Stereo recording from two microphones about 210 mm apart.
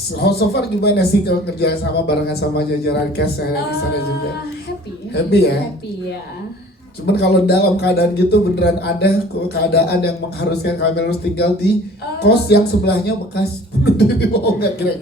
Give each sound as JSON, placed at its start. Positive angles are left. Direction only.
{"t": 0.2, "sound": "speech", "side_deg": 50}
{"t": 5.1, "sound": "speech", "side_deg": 50}
{"t": 7.2, "sound": "speech", "side_deg": 50}